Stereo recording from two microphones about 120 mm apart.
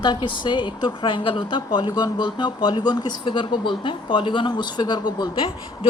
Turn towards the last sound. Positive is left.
turn(degrees=45)  # may be behind; listen again after turning